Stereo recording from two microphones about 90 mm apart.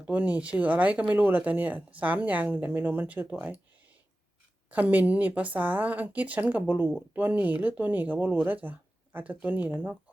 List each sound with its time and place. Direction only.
0.0 s speech: 15° right (ahead or behind)
4.7 s speech: 20° right (ahead or behind)